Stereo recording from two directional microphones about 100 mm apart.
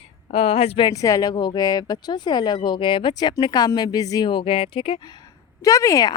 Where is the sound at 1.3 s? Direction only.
45° left (ahead or behind).